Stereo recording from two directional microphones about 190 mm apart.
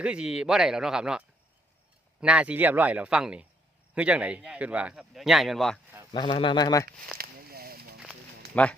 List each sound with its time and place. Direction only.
0.0 s speech: 5° right (ahead or behind)
2.2 s speech: 5° right (ahead or behind)
6.1 s speech: 25° left (ahead or behind)
7.2 s a sound: 50° right (ahead or behind)
8.6 s speech: 5° left (ahead or behind)